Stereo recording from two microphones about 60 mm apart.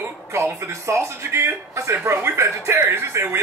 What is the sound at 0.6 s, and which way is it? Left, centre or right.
Speech, right.